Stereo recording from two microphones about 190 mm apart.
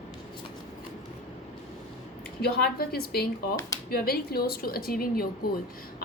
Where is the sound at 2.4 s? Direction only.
55° left (ahead or behind).